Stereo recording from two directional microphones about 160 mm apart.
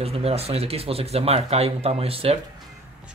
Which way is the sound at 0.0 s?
40° right (ahead or behind).